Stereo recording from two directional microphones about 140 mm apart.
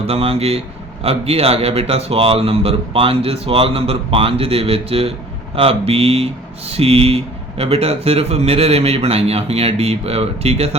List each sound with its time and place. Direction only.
0.1 s speech: 45° right (ahead or behind)